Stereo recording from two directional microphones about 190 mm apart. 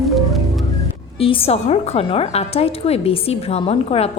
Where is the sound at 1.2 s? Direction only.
30° left (ahead or behind).